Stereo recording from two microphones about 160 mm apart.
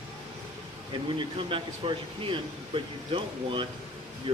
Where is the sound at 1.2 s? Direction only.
30° right (ahead or behind).